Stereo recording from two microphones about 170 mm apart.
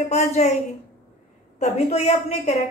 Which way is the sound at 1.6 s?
40° left (ahead or behind).